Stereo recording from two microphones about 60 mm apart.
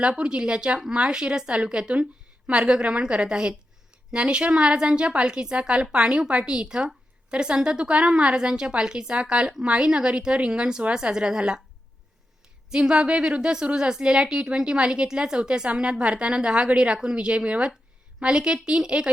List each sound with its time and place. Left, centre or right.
0.0 s a woman's voice: centre
12.7 s a woman's voice: centre